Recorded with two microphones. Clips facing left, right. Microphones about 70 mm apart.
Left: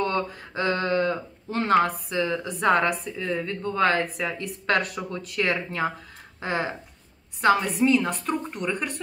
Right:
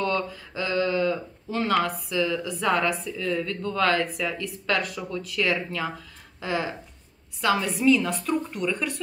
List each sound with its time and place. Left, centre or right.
0.0 s speech: left
3.1 s speech: left
4.0 s a woman's voice: left